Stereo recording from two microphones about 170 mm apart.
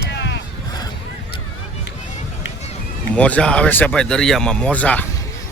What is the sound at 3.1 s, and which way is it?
Speech, 5° left (ahead or behind).